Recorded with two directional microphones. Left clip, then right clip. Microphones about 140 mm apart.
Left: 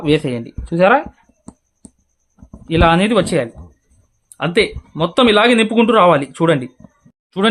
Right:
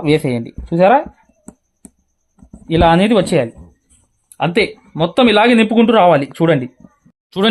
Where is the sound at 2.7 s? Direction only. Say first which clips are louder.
Right 2 dB; 20° right (ahead or behind).